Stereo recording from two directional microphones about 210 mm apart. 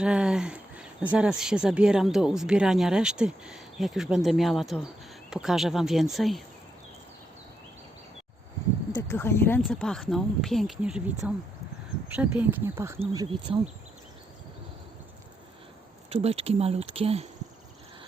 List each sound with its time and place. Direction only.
0.0 s speech: 5° right (ahead or behind)
9.0 s speech: 10° left (ahead or behind); by 13.0 s 10° right (ahead or behind)
13.0 s speech: 25° right (ahead or behind)
16.0 s speech: 30° right (ahead or behind)